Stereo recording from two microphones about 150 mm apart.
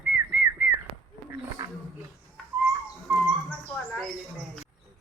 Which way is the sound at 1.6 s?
25° right (ahead or behind).